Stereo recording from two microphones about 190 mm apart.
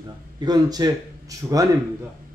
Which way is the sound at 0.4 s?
20° right (ahead or behind).